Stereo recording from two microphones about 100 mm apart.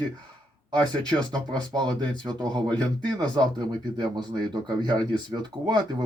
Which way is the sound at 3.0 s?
45° right (ahead or behind).